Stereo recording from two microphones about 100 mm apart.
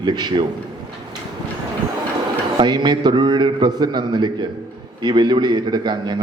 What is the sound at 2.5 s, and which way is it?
A man's voice, 45° right (ahead or behind).